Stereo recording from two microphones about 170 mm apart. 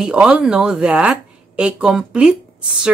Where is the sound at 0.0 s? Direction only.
5° right (ahead or behind).